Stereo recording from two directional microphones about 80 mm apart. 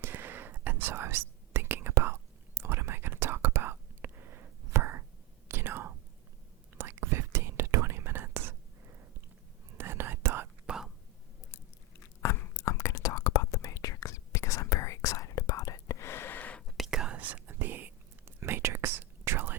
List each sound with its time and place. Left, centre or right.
0.0 s whispering: right
9.7 s whispering: right
10.7 s whispering: centre
11.5 s whispering: left; by 16.6 s centre
16.6 s whispering: centre; by 19.5 s right